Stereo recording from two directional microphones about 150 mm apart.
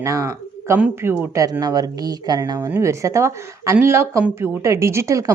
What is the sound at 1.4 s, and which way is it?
Speech, 25° right (ahead or behind).